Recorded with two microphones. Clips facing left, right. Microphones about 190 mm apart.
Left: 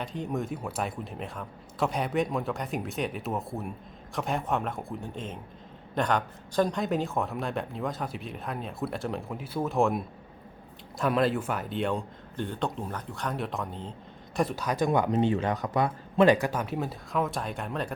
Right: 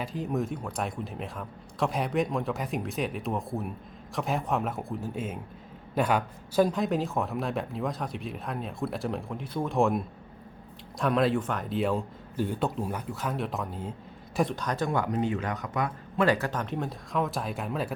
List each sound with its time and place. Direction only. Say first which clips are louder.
0.0 s a man's voice: right 2 dB; centre (ahead or behind)
14.8 s speech: left 4 dB; 20° left (ahead or behind)
16.2 s a man's voice: left 4 dB; 15° left (ahead or behind); by 17.9 s 5° right (ahead or behind)